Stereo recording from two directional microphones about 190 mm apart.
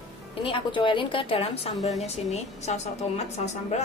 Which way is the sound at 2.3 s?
35° left (ahead or behind).